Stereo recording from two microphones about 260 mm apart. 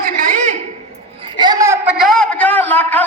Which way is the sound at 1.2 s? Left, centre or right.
Centre.